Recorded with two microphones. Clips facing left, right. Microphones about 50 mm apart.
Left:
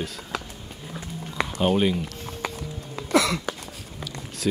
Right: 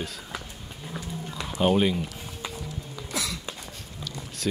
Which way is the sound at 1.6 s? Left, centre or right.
Centre.